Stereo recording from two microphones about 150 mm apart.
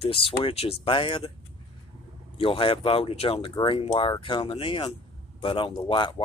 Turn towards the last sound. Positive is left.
turn(degrees=35)  # may be behind; listen again after turning